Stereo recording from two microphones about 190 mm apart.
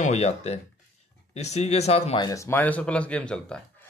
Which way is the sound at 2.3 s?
15° left (ahead or behind).